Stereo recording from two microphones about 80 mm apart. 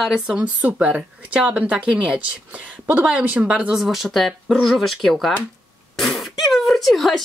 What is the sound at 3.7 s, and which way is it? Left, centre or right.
Speech, centre.